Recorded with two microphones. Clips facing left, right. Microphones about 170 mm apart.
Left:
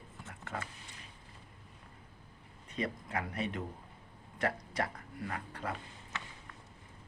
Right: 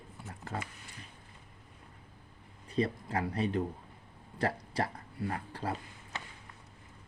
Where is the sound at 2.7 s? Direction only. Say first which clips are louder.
Right 5 dB; 30° right (ahead or behind).